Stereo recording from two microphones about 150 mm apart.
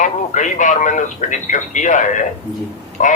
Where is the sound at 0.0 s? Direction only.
55° left (ahead or behind).